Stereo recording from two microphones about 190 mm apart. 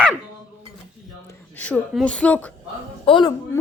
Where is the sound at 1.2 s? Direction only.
10° left (ahead or behind).